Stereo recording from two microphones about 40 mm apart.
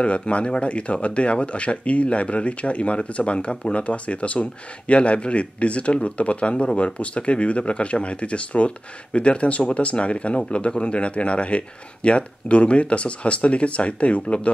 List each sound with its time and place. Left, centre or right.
0.0 s speech: left